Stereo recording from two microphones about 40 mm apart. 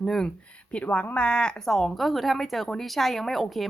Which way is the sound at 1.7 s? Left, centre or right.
Centre.